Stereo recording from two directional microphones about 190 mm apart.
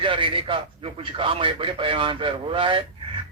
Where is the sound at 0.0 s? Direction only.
25° right (ahead or behind).